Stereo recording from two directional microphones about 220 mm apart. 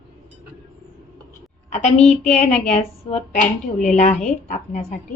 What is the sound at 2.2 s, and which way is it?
A woman's voice, 35° left (ahead or behind).